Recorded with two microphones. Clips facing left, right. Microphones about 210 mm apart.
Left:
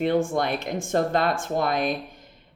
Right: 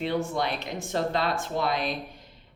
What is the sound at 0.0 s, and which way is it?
Speech, 50° left (ahead or behind).